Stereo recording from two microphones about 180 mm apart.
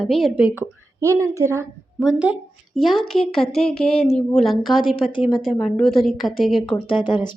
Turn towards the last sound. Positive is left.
turn(degrees=25)  # may be behind; listen again after turning